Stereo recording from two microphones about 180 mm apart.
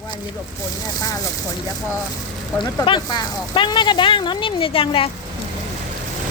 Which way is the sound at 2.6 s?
25° left (ahead or behind).